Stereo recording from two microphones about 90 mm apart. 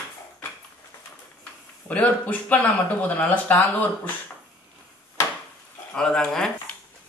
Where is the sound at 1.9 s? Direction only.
15° left (ahead or behind).